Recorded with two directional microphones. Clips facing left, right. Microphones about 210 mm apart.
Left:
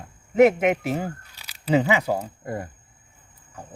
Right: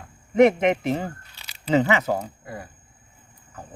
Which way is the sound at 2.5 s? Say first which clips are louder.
Left 6 dB; 50° left (ahead or behind).